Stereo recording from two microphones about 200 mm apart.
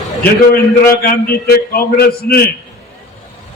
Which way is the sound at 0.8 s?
45° left (ahead or behind).